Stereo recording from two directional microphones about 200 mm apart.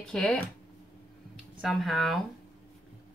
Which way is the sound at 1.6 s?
Centre (ahead or behind).